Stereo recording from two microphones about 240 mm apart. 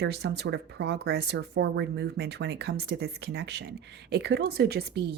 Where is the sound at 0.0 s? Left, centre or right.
Right.